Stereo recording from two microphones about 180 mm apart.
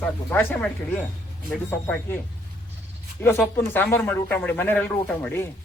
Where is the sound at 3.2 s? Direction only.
10° left (ahead or behind).